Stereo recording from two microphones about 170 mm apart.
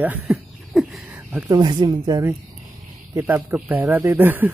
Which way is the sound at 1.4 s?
25° right (ahead or behind).